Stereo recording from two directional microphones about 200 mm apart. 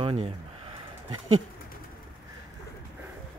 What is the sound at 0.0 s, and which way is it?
Speech, 30° right (ahead or behind).